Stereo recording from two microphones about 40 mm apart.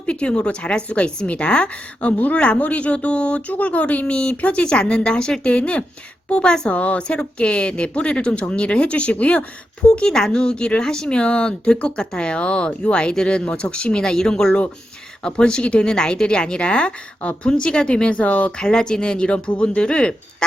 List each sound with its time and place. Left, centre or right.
0.0 s speech: left
2.1 s speech: left
2.4 s speech: left
6.3 s speech: left
6.7 s speech: left
10.1 s speech: centre; by 18.5 s left
18.5 s speech: centre